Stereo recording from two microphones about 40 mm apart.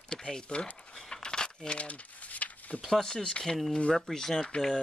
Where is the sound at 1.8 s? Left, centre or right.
Left.